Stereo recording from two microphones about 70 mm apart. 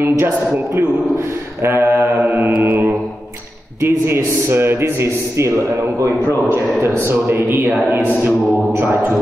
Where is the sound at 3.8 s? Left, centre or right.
Right.